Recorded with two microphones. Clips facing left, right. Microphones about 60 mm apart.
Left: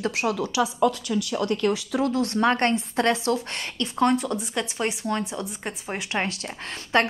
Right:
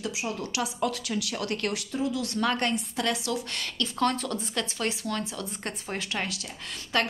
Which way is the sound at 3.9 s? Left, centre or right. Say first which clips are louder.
Left 6 dB; left.